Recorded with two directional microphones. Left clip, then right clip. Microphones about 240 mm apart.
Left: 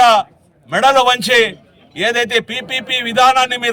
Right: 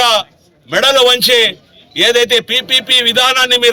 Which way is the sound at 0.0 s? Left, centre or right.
Centre.